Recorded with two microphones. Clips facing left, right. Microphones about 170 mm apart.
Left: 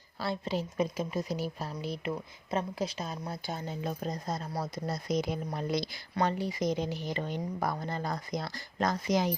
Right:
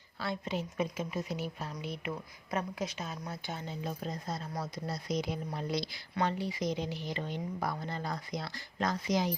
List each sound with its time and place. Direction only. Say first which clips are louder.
0.2 s a woman's voice: left 3 dB; 35° left (ahead or behind)